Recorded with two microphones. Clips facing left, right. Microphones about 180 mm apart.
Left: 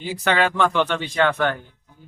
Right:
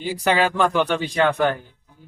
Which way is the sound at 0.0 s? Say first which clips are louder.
Right 1 dB; 5° right (ahead or behind).